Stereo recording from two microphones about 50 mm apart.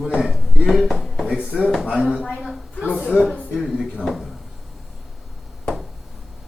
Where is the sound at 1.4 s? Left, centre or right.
Right.